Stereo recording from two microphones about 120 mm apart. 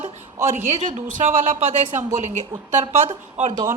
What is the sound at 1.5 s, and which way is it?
Speech, 90° right.